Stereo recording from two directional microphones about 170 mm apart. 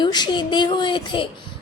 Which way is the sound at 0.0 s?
25° left (ahead or behind).